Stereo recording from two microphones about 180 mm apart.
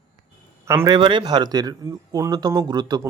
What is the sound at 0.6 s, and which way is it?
Speech, 15° right (ahead or behind).